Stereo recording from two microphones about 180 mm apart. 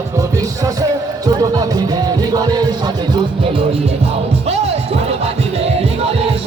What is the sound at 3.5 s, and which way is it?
Music, 35° right (ahead or behind).